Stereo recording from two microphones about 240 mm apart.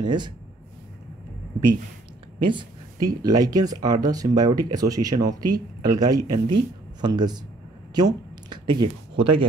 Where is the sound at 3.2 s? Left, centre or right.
Centre.